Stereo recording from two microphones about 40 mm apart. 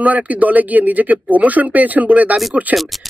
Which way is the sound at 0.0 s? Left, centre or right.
Right.